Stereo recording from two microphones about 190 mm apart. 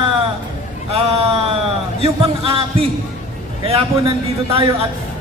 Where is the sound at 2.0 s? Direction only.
30° right (ahead or behind).